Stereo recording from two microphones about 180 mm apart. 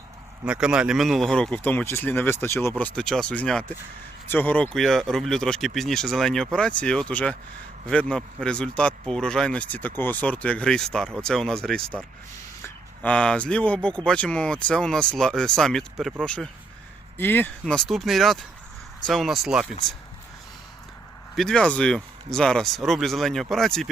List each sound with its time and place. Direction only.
0.4 s speech: 5° right (ahead or behind)
21.3 s speech: 5° left (ahead or behind)